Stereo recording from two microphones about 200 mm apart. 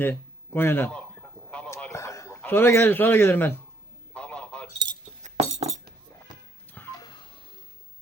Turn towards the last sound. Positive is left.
turn(degrees=20)  # may be behind; listen again after turning